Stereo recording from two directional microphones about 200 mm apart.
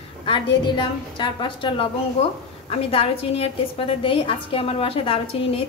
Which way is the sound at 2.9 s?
30° left (ahead or behind).